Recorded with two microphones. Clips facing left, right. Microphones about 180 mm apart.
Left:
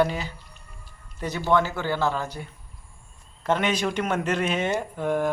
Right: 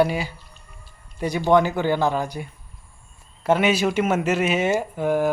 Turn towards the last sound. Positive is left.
turn(degrees=-5)  # may be behind; listen again after turning